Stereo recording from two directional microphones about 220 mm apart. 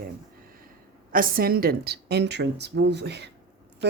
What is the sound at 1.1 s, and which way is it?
A woman's voice, 40° right (ahead or behind).